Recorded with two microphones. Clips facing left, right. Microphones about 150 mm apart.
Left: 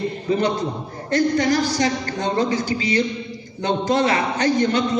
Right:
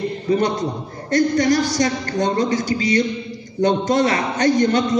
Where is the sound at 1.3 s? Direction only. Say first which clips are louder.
Right 2 dB; 45° right (ahead or behind).